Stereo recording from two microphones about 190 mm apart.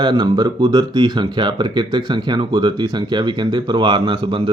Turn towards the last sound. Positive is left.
turn(degrees=-25)  # may be behind; listen again after turning